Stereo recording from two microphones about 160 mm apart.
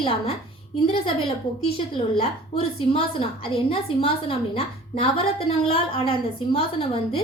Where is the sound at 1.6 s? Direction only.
35° left (ahead or behind).